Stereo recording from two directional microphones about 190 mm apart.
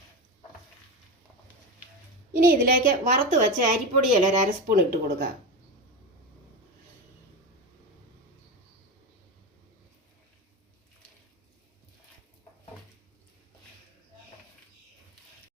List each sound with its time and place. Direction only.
2.3 s a woman's voice: 50° right (ahead or behind)